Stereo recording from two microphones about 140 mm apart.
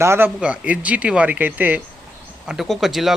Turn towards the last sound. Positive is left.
turn(degrees=0)  # may be behind; listen again after turning